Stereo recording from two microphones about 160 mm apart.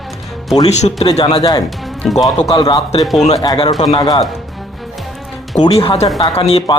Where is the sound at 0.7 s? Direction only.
40° left (ahead or behind).